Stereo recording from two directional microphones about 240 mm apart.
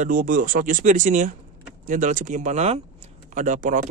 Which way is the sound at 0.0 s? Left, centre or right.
Right.